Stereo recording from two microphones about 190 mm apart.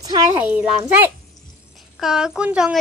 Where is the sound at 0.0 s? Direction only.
15° right (ahead or behind).